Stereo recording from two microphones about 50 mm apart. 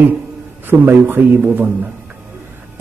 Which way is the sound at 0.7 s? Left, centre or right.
Right.